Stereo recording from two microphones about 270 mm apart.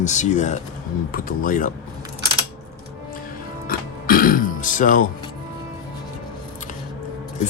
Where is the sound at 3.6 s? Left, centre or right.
Left.